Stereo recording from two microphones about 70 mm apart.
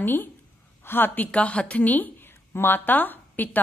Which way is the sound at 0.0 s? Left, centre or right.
Left.